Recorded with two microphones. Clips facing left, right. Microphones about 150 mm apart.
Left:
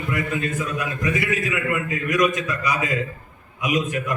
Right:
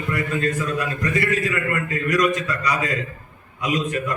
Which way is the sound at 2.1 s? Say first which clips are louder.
Even; 20° left (ahead or behind).